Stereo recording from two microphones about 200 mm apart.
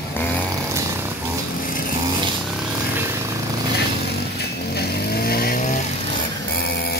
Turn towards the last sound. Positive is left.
turn(degrees=50)  # may be behind; listen again after turning